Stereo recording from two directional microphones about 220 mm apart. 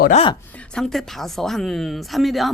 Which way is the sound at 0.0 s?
30° left (ahead or behind).